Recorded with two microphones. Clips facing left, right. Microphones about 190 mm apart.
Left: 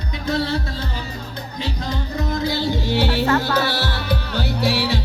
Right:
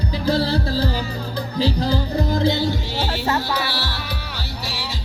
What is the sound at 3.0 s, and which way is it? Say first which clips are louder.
Music: left 5 dB; 65° left (ahead or behind).